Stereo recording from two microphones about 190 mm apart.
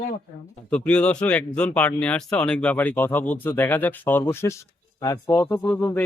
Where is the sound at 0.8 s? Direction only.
5° left (ahead or behind).